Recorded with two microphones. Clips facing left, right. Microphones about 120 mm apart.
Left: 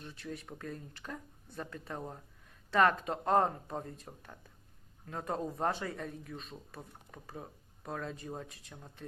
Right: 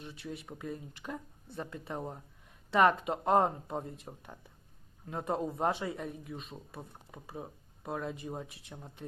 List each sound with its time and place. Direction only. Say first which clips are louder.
0.0 s speech: right 1 dB; 15° right (ahead or behind)